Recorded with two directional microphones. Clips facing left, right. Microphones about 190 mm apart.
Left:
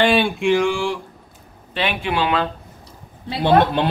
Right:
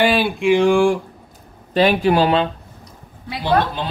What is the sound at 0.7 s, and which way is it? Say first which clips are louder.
Speech: right 7 dB; 50° right (ahead or behind).